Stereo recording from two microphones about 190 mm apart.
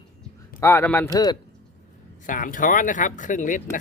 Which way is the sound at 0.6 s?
15° left (ahead or behind).